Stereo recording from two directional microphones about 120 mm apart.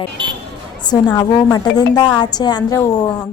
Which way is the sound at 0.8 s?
35° left (ahead or behind).